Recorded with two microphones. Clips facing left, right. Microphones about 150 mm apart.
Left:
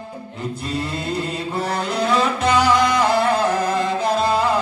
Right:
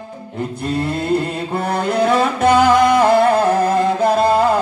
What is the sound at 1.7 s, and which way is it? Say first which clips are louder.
Music: right 5 dB; 55° right (ahead or behind).